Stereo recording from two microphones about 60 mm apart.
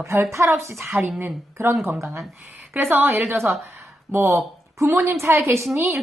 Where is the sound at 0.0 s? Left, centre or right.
Right.